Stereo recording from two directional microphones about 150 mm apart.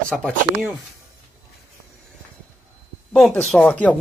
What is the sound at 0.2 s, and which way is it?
Speech, centre (ahead or behind).